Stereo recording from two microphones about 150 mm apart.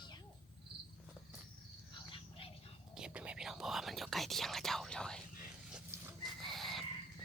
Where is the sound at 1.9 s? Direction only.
35° left (ahead or behind).